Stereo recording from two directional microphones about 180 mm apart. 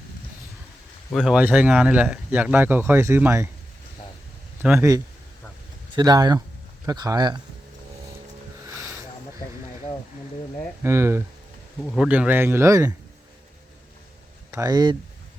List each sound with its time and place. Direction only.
1.1 s speech: 5° right (ahead or behind)
4.8 s speech: 20° right (ahead or behind)
8.7 s a sound: 5° right (ahead or behind)
10.8 s speech: 15° right (ahead or behind)
14.5 s speech: 20° right (ahead or behind)